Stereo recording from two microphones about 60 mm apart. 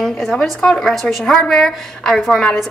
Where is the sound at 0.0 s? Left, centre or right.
Centre.